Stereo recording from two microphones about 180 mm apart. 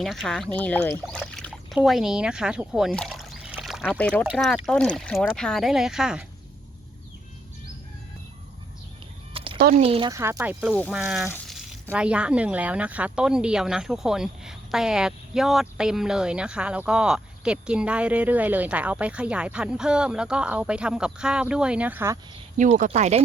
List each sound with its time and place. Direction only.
0.0 s speech: centre (ahead or behind)
9.3 s a sound: 30° right (ahead or behind)
9.7 s speech: 30° right (ahead or behind)
10.1 s speech: 15° right (ahead or behind)
22.5 s speech: 45° right (ahead or behind)